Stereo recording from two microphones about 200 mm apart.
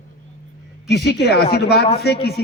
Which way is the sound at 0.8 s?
55° left (ahead or behind).